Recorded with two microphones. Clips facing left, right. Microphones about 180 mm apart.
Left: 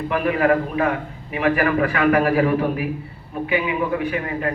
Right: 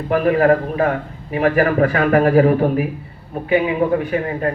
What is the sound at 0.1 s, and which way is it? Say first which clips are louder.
A man's voice: right 5 dB; 40° right (ahead or behind).